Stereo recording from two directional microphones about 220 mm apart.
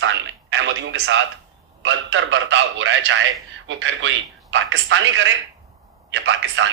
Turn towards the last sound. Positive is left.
turn(degrees=-55)  # may be behind; listen again after turning